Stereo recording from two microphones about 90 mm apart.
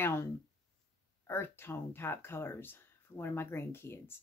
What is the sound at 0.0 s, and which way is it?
Speech, 30° left (ahead or behind).